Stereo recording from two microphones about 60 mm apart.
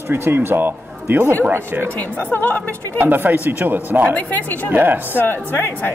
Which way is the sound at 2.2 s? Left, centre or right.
Left.